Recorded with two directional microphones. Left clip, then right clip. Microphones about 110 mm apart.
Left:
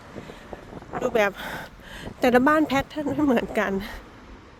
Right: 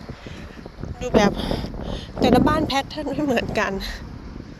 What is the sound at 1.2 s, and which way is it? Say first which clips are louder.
Speech: right 3 dB; 70° left (ahead or behind).